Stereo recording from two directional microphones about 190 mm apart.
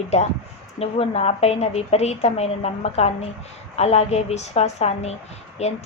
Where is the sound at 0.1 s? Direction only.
35° left (ahead or behind).